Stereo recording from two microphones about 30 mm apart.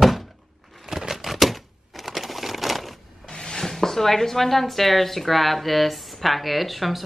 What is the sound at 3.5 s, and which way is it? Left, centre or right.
Speech, centre.